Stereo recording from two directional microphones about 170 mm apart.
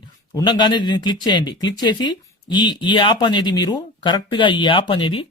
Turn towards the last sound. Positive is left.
turn(degrees=30)  # may be behind; listen again after turning